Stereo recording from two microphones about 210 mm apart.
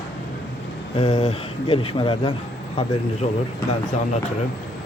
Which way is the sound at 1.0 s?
30° left (ahead or behind).